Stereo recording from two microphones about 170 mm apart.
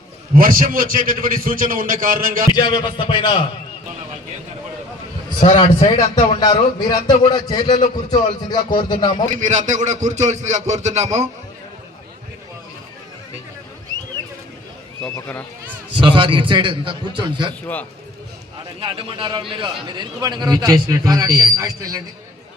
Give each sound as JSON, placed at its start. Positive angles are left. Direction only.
{"t": 0.3, "sound": "a man's voice", "side_deg": -55}
{"t": 2.5, "sound": "speech", "side_deg": 25}
{"t": 5.4, "sound": "a man's voice", "side_deg": 30}
{"t": 9.3, "sound": "a man's voice", "side_deg": -45}
{"t": 15.1, "sound": "speech", "side_deg": 10}
{"t": 16.0, "sound": "a man's voice", "side_deg": -30}
{"t": 18.8, "sound": "a man's voice", "side_deg": -30}